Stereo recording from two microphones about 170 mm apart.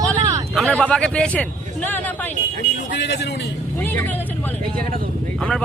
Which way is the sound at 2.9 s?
85° left.